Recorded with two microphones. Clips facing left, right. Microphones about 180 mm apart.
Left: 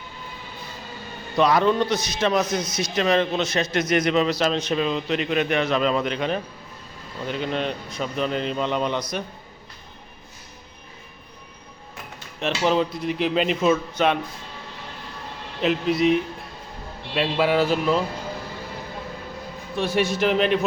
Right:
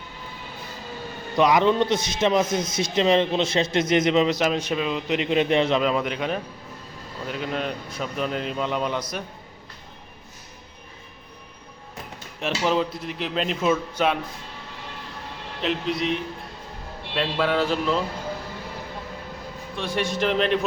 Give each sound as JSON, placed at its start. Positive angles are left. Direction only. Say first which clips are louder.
{"t": 1.4, "sound": "speech", "louder": "even", "side_deg": -15}
{"t": 5.1, "sound": "speech", "louder": "right 4 dB", "side_deg": -20}
{"t": 5.8, "sound": "a man's voice", "louder": "left 1 dB", "side_deg": -10}
{"t": 12.4, "sound": "a man's voice", "louder": "left 2 dB", "side_deg": -5}
{"t": 15.6, "sound": "a man's voice", "louder": "left 4 dB", "side_deg": 5}
{"t": 17.2, "sound": "a man's voice", "louder": "left 3 dB", "side_deg": 10}
{"t": 19.7, "sound": "a man's voice", "louder": "left 4 dB", "side_deg": 5}